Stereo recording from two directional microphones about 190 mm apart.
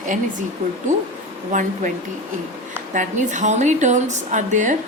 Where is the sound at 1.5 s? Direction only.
40° right (ahead or behind).